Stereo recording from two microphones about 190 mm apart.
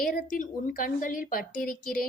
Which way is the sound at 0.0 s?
45° left (ahead or behind).